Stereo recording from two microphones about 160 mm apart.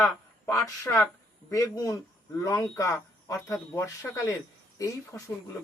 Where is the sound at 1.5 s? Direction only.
20° left (ahead or behind).